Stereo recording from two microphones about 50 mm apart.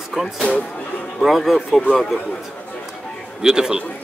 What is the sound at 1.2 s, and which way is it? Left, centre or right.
Speech, centre.